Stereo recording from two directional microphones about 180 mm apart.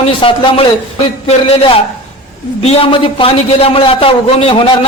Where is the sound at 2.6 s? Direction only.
35° left (ahead or behind).